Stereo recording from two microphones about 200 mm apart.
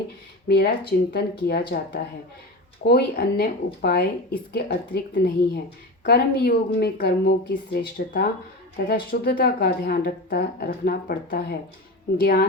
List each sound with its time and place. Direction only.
0.4 s speech: 50° left (ahead or behind)